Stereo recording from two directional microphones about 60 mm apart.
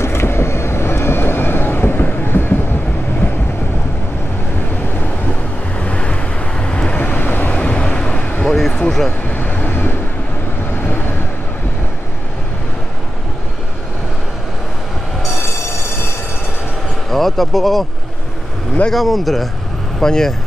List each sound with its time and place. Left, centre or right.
0.0 s vehicle: left
5.8 s waves: left
6.6 s vehicle: centre
7.5 s a sound: centre
8.5 s a sound: centre
9.3 s vehicle: left
17.1 s speech: centre
18.9 s speech: centre